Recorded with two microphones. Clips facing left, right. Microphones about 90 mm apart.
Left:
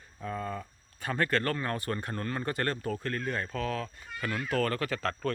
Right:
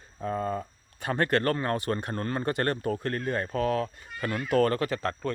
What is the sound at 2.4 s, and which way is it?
Speech, 55° right (ahead or behind).